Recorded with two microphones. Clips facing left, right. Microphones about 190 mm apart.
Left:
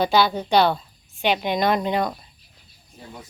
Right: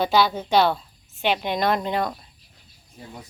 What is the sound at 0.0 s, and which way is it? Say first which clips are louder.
Speech: left 1 dB; centre (ahead or behind).